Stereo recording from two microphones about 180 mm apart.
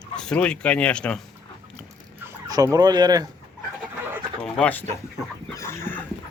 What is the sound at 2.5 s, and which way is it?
Speech, 20° right (ahead or behind).